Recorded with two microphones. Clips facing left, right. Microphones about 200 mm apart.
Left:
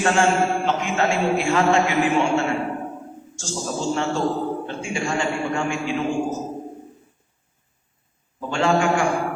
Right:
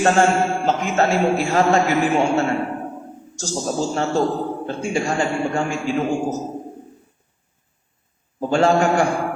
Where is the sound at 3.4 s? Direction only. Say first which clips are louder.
Right 5 dB; 40° right (ahead or behind).